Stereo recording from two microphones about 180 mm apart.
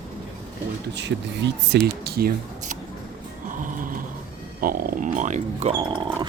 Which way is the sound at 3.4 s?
45° right (ahead or behind).